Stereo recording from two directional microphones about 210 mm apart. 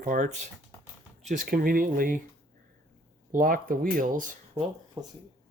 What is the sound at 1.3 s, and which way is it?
Speech, 40° right (ahead or behind).